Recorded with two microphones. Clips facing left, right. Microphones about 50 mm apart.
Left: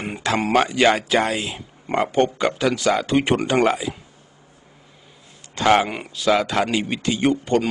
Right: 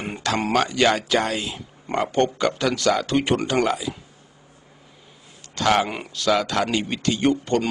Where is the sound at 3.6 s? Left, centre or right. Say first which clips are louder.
Left 3 dB; left.